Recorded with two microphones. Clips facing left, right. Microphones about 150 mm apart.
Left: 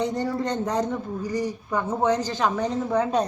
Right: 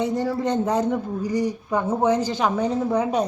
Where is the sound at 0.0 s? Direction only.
5° right (ahead or behind).